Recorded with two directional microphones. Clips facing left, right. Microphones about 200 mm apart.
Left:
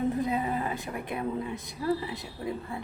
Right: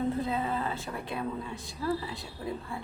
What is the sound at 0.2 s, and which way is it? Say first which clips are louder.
A woman's voice: left 2 dB; 15° left (ahead or behind).